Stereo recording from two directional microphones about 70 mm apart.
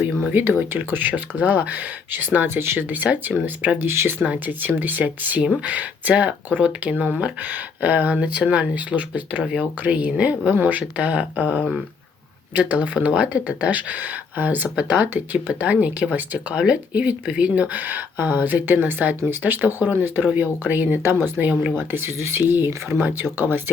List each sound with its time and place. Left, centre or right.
0.7 s speech: right
2.9 s speech: right
4.2 s speech: right